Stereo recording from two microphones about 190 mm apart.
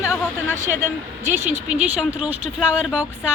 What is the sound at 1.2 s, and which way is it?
Speech, 10° right (ahead or behind).